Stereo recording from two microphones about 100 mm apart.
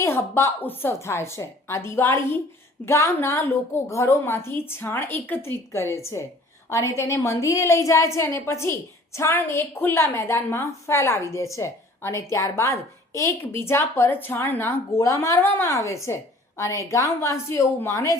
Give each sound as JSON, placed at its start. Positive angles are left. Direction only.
{"t": 0.0, "sound": "a woman's voice", "side_deg": 25}